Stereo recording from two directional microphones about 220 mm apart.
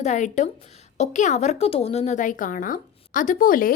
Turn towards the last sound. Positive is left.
turn(degrees=40)  # may be behind; listen again after turning